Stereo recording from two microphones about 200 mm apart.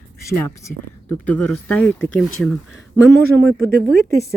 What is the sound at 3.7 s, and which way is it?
Speech, 45° right (ahead or behind).